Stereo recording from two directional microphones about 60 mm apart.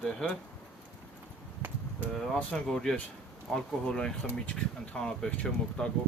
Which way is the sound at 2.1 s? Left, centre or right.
Centre.